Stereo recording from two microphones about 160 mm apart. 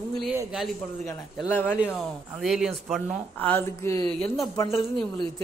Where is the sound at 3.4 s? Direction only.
10° left (ahead or behind).